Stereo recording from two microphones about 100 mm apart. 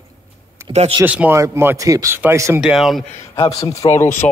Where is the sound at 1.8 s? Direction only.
35° right (ahead or behind).